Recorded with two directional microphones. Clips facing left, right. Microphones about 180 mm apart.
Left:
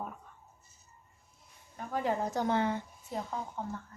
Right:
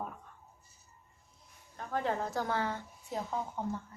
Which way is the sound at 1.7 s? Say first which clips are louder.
Left 1 dB; 10° left (ahead or behind).